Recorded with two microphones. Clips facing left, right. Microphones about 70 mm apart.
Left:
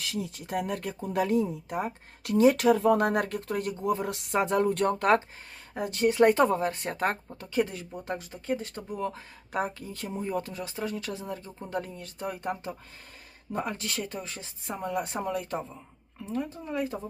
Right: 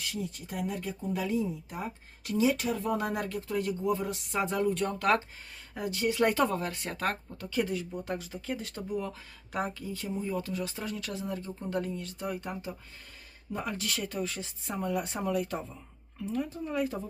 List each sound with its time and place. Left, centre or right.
0.0 s speech: left
2.6 s speech: left
4.4 s speech: left
4.9 s speech: left
5.7 s speech: left
6.1 s speech: left
10.5 s speech: left
16.7 s speech: left